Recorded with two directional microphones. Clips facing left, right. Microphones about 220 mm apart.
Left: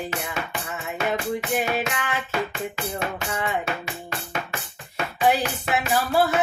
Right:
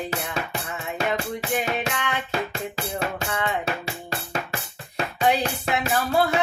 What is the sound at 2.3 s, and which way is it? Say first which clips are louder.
Music: left 1 dB; 35° right (ahead or behind).